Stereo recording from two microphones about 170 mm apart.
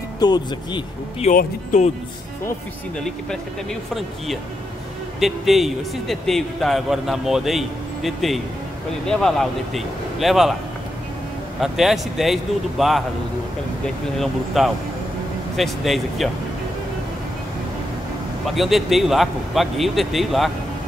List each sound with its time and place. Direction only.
0.2 s speech: 25° left (ahead or behind)
1.2 s speech: 45° left (ahead or behind)
5.2 s a man's voice: centre (ahead or behind)
11.6 s a man's voice: centre (ahead or behind)
14.1 s a man's voice: centre (ahead or behind)
18.4 s a man's voice: centre (ahead or behind)